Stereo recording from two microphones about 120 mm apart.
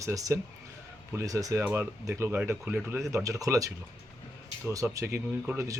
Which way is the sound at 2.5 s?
5° right (ahead or behind).